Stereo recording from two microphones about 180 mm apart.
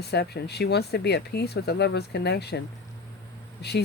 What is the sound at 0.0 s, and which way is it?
Speech, 65° left (ahead or behind).